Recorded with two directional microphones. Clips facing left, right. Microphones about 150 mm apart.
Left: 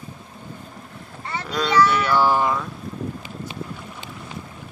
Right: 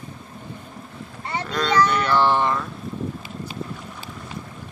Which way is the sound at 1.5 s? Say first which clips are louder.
Left 1 dB; 5° left (ahead or behind).